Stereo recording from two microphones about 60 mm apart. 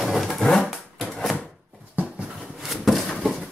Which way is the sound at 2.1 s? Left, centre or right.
Centre.